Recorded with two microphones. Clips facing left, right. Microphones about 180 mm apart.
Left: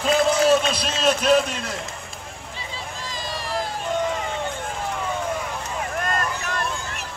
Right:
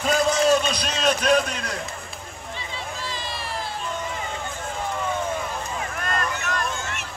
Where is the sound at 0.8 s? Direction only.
5° left (ahead or behind).